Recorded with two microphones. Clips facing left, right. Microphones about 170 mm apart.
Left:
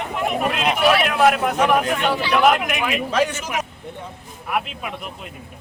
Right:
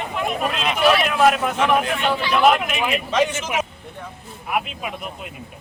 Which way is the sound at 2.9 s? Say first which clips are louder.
Right 1 dB; 5° left (ahead or behind).